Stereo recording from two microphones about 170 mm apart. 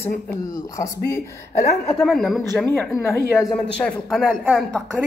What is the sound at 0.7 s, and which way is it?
Speech, 15° left (ahead or behind).